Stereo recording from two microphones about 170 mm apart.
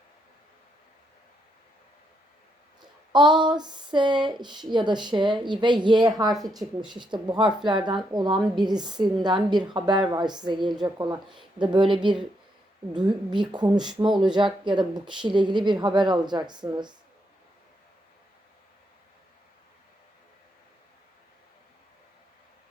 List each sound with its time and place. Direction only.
3.1 s speech: 25° right (ahead or behind)